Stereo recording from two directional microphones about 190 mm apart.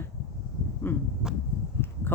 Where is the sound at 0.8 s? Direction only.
10° left (ahead or behind).